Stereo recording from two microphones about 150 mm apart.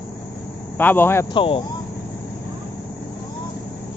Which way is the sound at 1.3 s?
35° left (ahead or behind).